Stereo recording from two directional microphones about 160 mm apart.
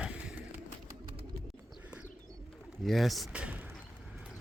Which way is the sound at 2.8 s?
Centre (ahead or behind).